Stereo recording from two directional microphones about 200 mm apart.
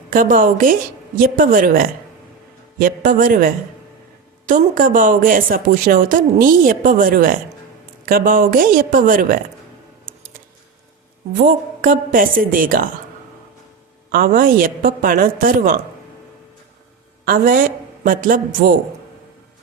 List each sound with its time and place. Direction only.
0.1 s speech: 45° right (ahead or behind)
11.3 s speech: 40° right (ahead or behind)
14.1 s speech: 45° right (ahead or behind)
17.2 s a man's voice: 45° right (ahead or behind)